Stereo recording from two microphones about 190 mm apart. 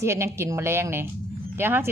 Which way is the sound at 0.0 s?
15° right (ahead or behind).